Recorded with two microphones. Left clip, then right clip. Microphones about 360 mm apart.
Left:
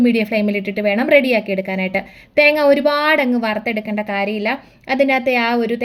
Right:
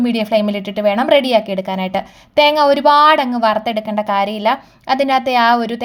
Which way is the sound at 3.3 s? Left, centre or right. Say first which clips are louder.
Right 4 dB; right.